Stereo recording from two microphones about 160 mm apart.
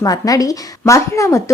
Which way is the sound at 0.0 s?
20° left (ahead or behind).